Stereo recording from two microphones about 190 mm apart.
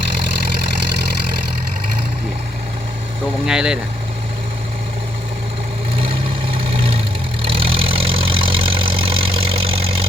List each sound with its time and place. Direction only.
3.4 s speech: 5° right (ahead or behind)
6.0 s vehicle: 30° right (ahead or behind)